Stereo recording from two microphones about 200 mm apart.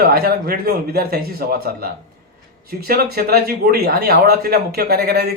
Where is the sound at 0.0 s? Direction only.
50° right (ahead or behind).